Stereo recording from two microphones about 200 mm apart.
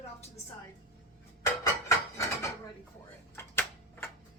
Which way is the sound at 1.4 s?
15° left (ahead or behind).